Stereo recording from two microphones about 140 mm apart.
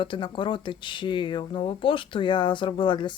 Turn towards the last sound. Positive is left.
turn(degrees=35)  # may be behind; listen again after turning